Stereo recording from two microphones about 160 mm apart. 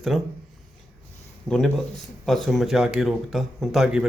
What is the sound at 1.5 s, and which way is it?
Speech, 5° left (ahead or behind).